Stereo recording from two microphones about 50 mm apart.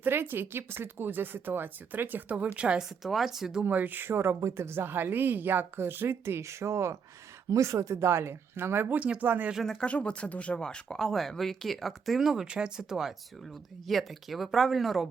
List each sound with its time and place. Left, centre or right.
0.0 s a woman's voice: right
2.6 s speech: right
3.0 s speech: centre
3.6 s a woman's voice: right
7.5 s speech: right
9.0 s speech: right
9.2 s speech: right
9.8 s speech: left; by 13.1 s centre
13.8 s speech: centre